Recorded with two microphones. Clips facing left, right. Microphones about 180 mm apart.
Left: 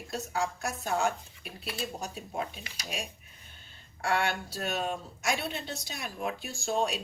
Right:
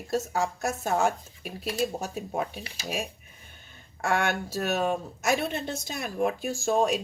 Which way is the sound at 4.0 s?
45° right (ahead or behind).